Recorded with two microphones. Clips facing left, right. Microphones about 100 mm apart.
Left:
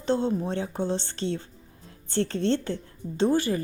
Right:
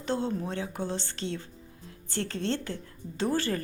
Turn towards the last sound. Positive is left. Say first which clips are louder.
# left 5 dB
turn(degrees=15)  # may be behind; listen again after turning